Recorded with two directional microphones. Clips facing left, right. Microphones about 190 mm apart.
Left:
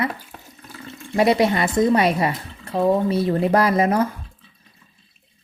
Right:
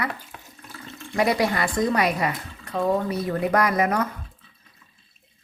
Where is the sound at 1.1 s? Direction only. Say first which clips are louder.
Left 5 dB; 25° left (ahead or behind).